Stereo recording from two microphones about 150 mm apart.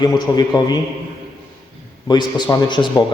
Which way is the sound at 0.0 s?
30° left (ahead or behind).